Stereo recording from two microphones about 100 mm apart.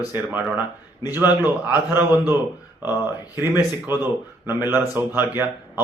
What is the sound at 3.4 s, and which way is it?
Speech, 25° right (ahead or behind).